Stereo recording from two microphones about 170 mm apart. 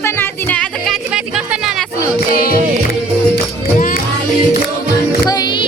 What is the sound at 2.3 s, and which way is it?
Music, 60° left (ahead or behind).